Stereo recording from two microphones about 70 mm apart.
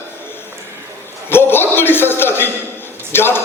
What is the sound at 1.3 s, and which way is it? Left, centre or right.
Chuckle, left.